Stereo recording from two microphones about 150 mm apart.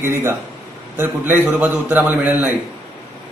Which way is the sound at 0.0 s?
15° right (ahead or behind).